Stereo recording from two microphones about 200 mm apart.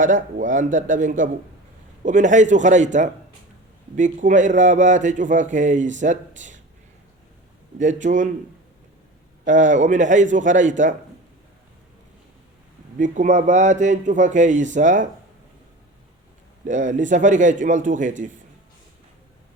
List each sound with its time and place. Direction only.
0.0 s a man's voice: 40° right (ahead or behind)
7.8 s a man's voice: 40° right (ahead or behind)
9.4 s a man's voice: 40° right (ahead or behind)
13.0 s a man's voice: 40° right (ahead or behind)
16.6 s a man's voice: 40° right (ahead or behind)